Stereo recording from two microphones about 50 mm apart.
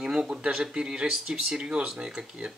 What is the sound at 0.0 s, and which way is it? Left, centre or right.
Speech, centre.